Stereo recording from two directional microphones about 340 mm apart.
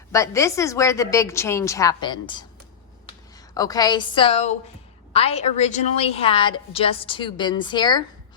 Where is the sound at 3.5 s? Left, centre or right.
Centre.